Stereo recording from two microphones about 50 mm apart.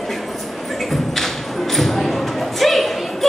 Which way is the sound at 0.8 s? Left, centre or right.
Centre.